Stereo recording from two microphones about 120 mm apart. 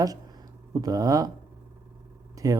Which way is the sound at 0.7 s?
30° right (ahead or behind).